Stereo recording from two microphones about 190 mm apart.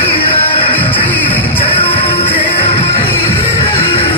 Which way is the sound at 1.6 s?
30° left (ahead or behind).